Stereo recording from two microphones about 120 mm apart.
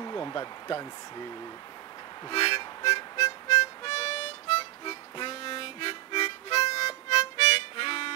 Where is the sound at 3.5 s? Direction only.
55° left (ahead or behind).